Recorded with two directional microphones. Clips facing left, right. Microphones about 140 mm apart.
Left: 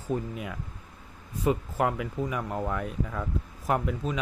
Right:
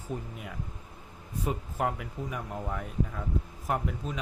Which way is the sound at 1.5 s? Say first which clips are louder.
Left 5 dB; 90° left.